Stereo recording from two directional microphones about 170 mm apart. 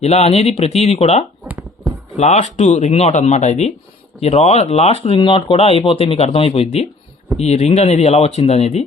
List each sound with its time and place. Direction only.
0.0 s speech: 40° left (ahead or behind)